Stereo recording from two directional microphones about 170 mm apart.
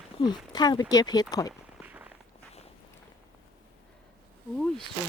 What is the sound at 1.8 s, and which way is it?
Walk, 10° right (ahead or behind).